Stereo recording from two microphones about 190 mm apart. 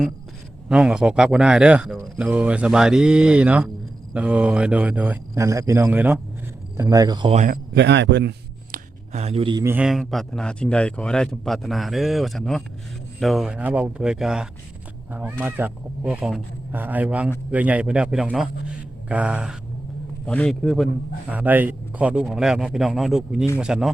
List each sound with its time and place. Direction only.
0.7 s a man's voice: 5° right (ahead or behind); by 7.3 s 25° right (ahead or behind)
7.3 s speech: 45° right (ahead or behind)
7.7 s a sound: 65° right (ahead or behind)
9.1 s a man's voice: 35° right (ahead or behind)
9.6 s a man's voice: 5° right (ahead or behind)
20.2 s a man's voice: 5° left (ahead or behind)